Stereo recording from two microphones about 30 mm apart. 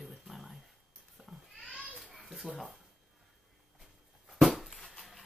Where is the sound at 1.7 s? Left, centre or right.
Right.